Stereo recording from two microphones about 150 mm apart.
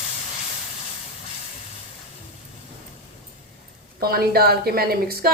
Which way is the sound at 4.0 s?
90° right.